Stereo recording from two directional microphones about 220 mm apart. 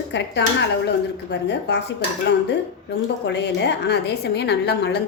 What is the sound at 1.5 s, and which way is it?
A woman's voice, 50° left (ahead or behind).